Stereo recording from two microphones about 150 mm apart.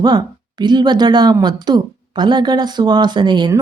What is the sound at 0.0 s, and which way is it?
A woman's voice, 30° right (ahead or behind).